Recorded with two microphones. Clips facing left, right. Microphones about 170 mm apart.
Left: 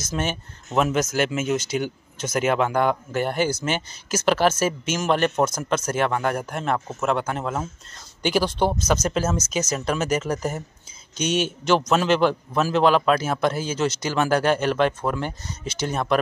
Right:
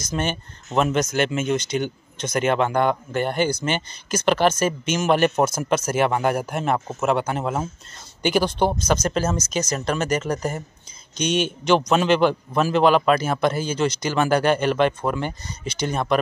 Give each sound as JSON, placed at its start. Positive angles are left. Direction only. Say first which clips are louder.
{"t": 0.0, "sound": "speech", "louder": "right 1 dB", "side_deg": 5}